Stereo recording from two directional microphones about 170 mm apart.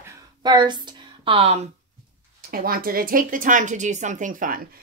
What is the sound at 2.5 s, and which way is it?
Speech, 60° right (ahead or behind).